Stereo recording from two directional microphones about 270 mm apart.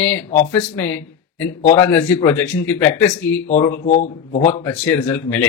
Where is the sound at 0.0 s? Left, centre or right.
Centre.